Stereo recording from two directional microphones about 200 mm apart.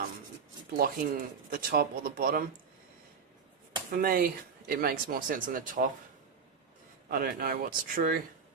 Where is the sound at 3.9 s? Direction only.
45° right (ahead or behind).